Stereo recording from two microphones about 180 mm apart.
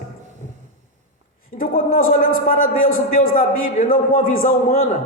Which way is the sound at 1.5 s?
50° left (ahead or behind).